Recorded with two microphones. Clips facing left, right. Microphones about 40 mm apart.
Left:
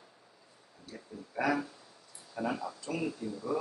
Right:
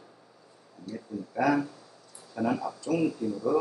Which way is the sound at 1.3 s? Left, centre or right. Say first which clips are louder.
Right 5 dB; centre.